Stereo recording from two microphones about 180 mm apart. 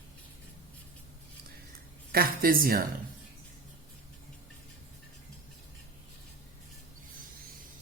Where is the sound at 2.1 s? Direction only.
55° right (ahead or behind).